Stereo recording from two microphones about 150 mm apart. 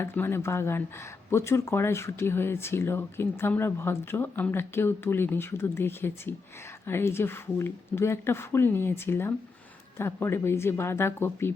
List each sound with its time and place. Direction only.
0.0 s speech: 15° left (ahead or behind)